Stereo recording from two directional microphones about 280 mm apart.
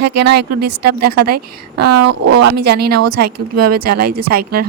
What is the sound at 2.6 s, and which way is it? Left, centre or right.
Speech, right.